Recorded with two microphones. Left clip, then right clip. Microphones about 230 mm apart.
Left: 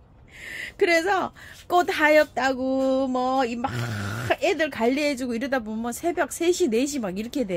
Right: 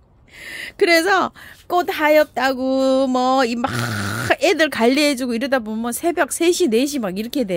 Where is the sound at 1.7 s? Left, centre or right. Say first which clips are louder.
Right 3 dB; right.